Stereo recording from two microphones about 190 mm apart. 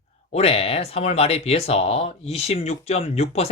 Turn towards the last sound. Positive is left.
turn(degrees=35)  # may be behind; listen again after turning